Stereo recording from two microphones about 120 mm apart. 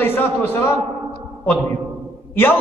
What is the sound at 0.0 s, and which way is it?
A man's voice, 20° left (ahead or behind).